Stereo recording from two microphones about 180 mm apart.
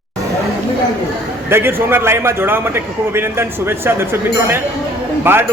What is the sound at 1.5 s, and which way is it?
A man's voice, 15° right (ahead or behind).